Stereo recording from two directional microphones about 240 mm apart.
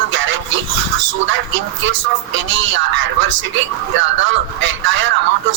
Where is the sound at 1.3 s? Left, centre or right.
Right.